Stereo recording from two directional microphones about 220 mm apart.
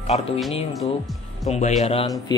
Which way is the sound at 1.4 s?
30° left (ahead or behind).